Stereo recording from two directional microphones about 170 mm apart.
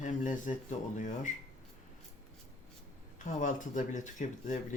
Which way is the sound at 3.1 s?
45° left (ahead or behind).